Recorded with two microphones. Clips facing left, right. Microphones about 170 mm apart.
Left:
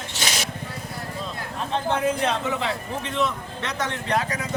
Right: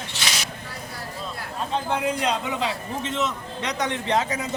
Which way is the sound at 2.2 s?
15° right (ahead or behind).